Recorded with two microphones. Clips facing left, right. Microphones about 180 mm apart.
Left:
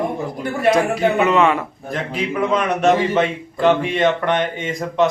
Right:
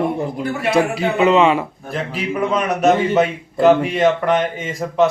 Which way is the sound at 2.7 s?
10° right (ahead or behind).